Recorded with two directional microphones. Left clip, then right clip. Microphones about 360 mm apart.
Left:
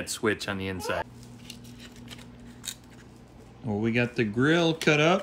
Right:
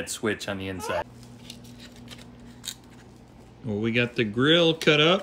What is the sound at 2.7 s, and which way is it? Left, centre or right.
Scissors, centre.